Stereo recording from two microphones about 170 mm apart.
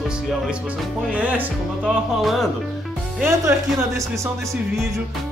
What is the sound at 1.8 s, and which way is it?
Music, centre (ahead or behind).